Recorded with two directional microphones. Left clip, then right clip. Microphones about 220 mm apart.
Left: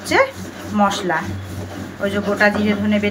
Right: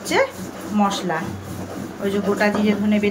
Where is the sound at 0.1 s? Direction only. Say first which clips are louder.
Left 3 dB; 10° right (ahead or behind).